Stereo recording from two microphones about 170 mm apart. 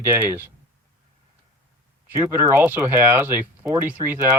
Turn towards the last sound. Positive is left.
turn(degrees=-10)  # may be behind; listen again after turning